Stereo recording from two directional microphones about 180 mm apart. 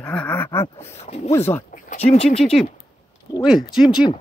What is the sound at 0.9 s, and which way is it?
Speech, 35° left (ahead or behind).